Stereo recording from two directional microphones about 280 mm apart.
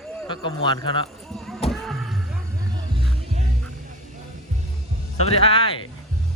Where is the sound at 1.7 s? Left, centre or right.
Centre.